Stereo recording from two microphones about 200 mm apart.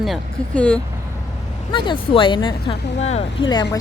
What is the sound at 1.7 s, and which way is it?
Speech, 25° left (ahead or behind).